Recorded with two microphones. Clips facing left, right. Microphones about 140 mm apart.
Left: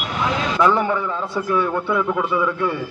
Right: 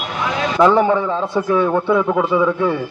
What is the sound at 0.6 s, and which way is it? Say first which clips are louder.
A man's voice: right 6 dB; 20° right (ahead or behind).